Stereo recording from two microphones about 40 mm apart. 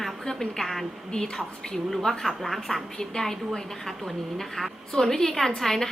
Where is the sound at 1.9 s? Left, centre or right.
Centre.